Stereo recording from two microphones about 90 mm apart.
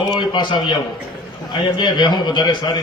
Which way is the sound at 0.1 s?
60° left (ahead or behind).